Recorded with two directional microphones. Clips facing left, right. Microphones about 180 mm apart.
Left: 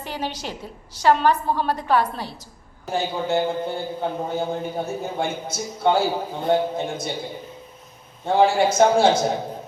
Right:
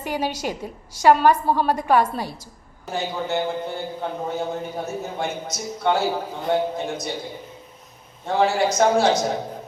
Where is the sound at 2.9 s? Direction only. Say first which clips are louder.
Left 2 dB; 30° left (ahead or behind).